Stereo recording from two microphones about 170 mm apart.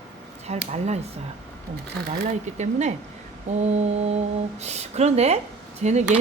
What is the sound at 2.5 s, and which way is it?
Speech, 40° right (ahead or behind).